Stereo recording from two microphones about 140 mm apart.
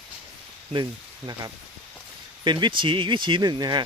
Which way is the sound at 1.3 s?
30° right (ahead or behind).